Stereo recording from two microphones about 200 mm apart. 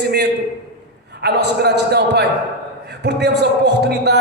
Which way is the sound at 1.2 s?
55° right (ahead or behind).